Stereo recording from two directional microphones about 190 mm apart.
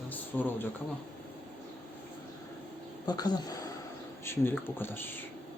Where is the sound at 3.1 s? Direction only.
20° left (ahead or behind).